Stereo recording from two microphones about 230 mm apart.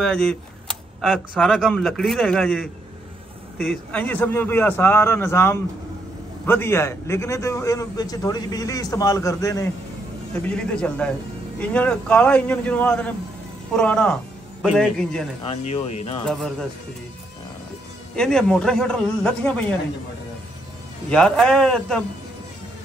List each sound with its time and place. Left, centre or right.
0.0 s a man's voice: centre
15.4 s speech: left
16.3 s speech: centre
18.1 s speech: centre
21.1 s speech: centre